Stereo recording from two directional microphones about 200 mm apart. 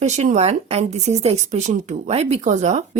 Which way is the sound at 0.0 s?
35° right (ahead or behind).